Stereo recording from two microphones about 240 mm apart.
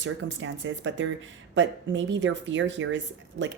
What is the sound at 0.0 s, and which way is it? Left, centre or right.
Speech, right.